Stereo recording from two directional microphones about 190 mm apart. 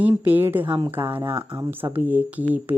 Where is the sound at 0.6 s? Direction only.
25° right (ahead or behind).